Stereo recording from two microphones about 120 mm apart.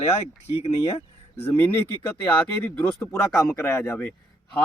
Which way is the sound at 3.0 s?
25° left (ahead or behind).